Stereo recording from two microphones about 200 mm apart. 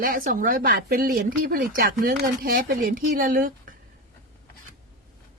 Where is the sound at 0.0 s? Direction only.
45° right (ahead or behind).